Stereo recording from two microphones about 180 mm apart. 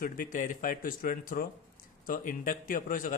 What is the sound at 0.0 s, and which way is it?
Speech, 50° left (ahead or behind).